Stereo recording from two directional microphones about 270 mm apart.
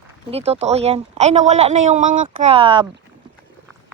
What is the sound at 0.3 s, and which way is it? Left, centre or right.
Speech, right.